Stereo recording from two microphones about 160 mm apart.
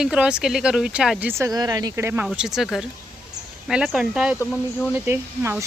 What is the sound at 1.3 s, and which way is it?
Speech, 20° right (ahead or behind).